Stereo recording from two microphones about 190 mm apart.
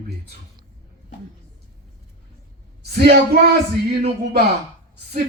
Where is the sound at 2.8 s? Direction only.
60° right (ahead or behind).